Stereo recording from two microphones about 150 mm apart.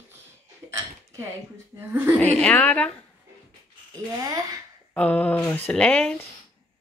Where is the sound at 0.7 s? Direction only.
20° right (ahead or behind).